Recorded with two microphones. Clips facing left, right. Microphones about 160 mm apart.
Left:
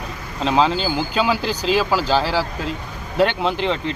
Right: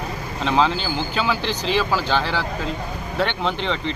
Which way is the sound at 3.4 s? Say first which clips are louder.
Left 3 dB; 5° left (ahead or behind).